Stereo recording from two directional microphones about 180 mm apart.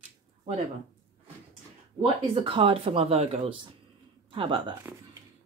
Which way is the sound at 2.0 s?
30° right (ahead or behind).